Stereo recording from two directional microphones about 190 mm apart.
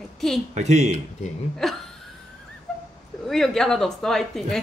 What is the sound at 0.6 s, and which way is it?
Speech, 35° right (ahead or behind).